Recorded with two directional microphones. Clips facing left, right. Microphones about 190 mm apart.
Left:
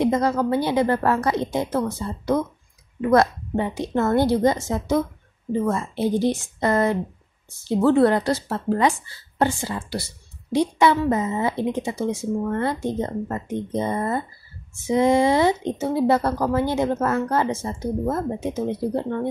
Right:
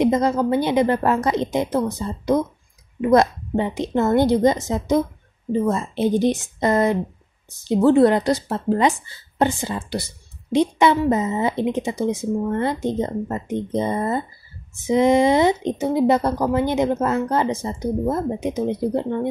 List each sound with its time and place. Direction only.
0.0 s speech: 20° right (ahead or behind)